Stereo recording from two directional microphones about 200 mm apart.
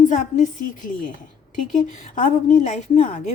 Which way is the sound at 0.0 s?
40° left (ahead or behind).